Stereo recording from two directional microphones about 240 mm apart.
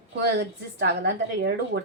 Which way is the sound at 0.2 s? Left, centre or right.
Right.